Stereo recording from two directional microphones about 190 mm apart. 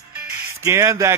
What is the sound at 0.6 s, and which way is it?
Speech, 15° right (ahead or behind).